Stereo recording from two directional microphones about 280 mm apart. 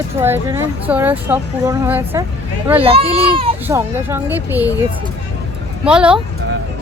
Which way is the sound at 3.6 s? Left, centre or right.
Centre.